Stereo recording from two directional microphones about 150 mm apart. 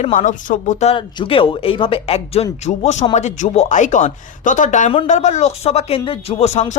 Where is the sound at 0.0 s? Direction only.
60° left (ahead or behind).